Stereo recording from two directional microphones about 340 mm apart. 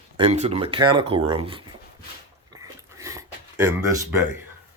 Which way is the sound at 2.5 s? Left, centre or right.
Centre.